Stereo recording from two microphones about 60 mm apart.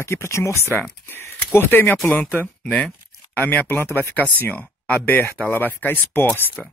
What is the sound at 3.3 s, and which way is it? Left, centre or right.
Speech, left.